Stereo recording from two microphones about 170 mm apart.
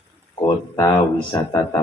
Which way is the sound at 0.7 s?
20° left (ahead or behind).